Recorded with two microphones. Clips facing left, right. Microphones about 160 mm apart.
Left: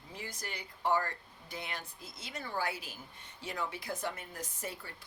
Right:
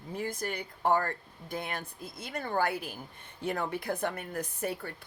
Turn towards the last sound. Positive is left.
turn(degrees=-60)  # may be behind; listen again after turning